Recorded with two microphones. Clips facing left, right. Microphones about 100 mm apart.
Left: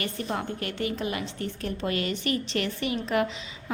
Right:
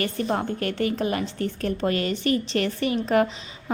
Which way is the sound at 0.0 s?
40° right (ahead or behind).